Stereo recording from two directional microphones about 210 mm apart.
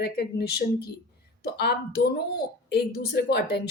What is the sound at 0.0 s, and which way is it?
Speech, 50° left (ahead or behind).